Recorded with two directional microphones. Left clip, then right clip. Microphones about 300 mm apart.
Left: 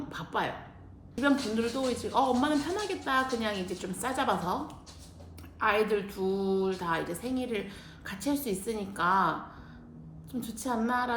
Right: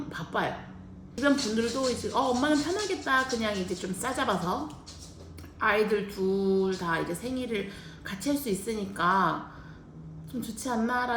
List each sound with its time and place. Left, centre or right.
0.1 s speech: centre
5.5 s speech: centre
10.4 s speech: centre